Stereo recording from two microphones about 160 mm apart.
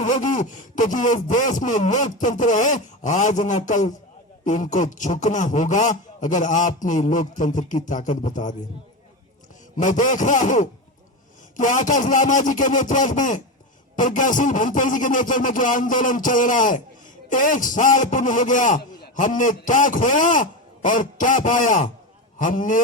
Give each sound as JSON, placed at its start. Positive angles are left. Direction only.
{"t": 0.0, "sound": "a man's voice", "side_deg": 50}
{"t": 9.7, "sound": "a man's voice", "side_deg": 50}